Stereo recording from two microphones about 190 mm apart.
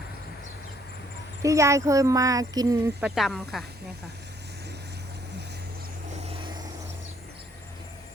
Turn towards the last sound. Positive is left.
turn(degrees=-25)  # may be behind; listen again after turning